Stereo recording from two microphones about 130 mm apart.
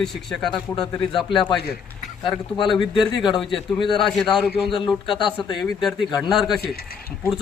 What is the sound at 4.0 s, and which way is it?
Speech, centre (ahead or behind).